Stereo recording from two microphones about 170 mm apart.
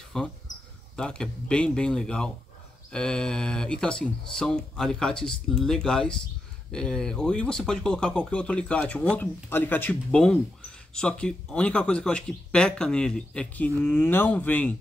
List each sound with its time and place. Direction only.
0.1 s speech: 5° left (ahead or behind)